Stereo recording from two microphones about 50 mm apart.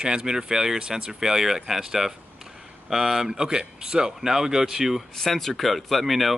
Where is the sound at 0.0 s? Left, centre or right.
Centre.